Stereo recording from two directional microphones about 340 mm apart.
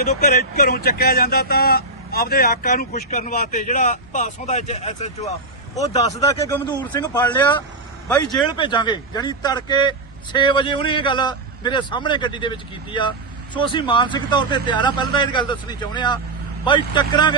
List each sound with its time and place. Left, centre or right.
0.0 s a man's voice: left